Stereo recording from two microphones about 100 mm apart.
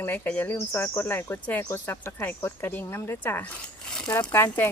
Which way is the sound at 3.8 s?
10° left (ahead or behind).